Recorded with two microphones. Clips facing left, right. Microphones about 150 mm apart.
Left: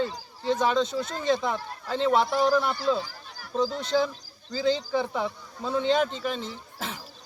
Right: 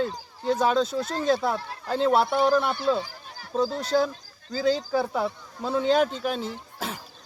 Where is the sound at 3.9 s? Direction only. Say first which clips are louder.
Right 2 dB; 5° right (ahead or behind).